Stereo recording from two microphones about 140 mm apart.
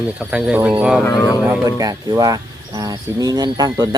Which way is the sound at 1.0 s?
20° left (ahead or behind).